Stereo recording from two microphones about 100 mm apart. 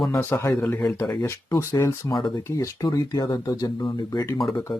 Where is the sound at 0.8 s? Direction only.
30° left (ahead or behind).